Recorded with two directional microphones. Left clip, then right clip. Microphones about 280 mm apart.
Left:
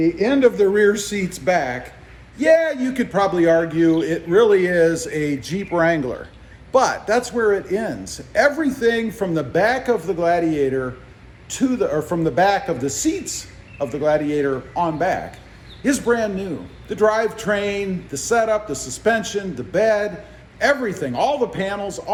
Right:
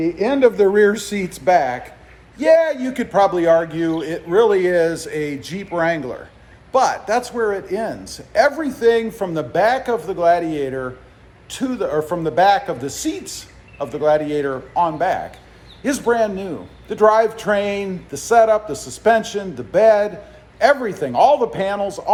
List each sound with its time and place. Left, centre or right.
0.0 s speech: centre